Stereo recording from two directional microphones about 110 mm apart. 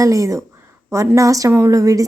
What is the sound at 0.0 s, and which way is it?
A woman's voice, 30° right (ahead or behind).